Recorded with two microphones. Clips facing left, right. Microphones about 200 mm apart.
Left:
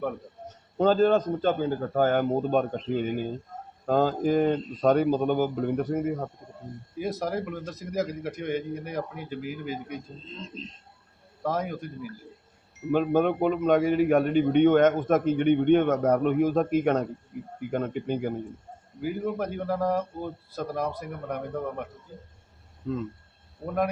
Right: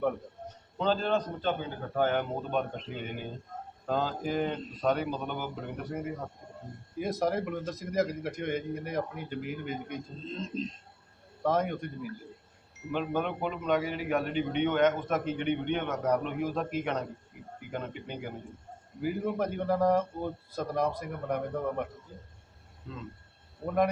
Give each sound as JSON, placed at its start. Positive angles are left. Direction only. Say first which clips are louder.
{"t": 0.8, "sound": "a man's voice", "louder": "left 8 dB", "side_deg": 45}
{"t": 6.9, "sound": "a man's voice", "louder": "even", "side_deg": 0}
{"t": 11.4, "sound": "a man's voice", "louder": "right 1 dB", "side_deg": 0}
{"t": 12.9, "sound": "a man's voice", "louder": "left 8 dB", "side_deg": 45}
{"t": 19.0, "sound": "a man's voice", "louder": "left 1 dB", "side_deg": 0}
{"t": 23.6, "sound": "a man's voice", "louder": "even", "side_deg": 0}